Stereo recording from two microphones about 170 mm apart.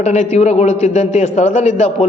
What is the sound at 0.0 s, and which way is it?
A man's voice, 40° left (ahead or behind).